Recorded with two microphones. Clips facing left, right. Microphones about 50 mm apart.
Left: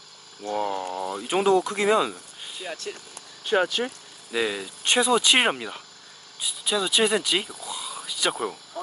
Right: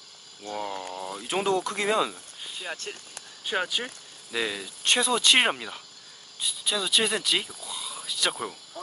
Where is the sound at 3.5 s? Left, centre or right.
Centre.